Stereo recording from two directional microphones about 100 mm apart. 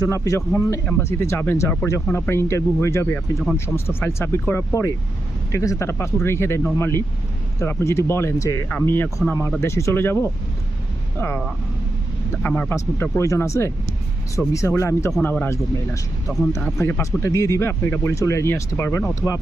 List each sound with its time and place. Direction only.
0.0 s a man's voice: 35° left (ahead or behind)
8.7 s speech: 20° left (ahead or behind)
12.4 s speech: 20° left (ahead or behind)